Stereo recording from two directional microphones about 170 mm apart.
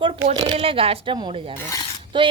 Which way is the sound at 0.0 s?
35° right (ahead or behind).